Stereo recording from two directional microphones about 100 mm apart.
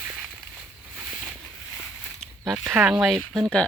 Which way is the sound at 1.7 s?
5° left (ahead or behind).